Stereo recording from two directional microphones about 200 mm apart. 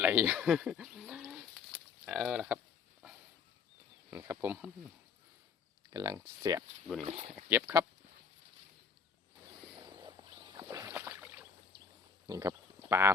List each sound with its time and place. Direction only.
0.0 s a sound: 10° right (ahead or behind)
2.0 s speech: 5° right (ahead or behind)
4.1 s speech: 10° right (ahead or behind)
5.9 s speech: 15° right (ahead or behind)
7.0 s speech: 30° right (ahead or behind)
7.5 s speech: 15° right (ahead or behind)
10.6 s boat: 15° right (ahead or behind)
12.3 s speech: 15° right (ahead or behind)